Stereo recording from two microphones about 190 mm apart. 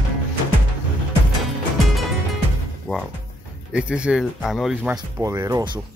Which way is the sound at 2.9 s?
5° left (ahead or behind).